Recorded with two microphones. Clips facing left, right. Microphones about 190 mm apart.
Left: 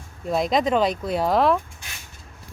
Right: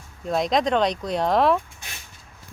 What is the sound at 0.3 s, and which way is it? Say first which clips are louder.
Speech: left 1 dB; centre (ahead or behind).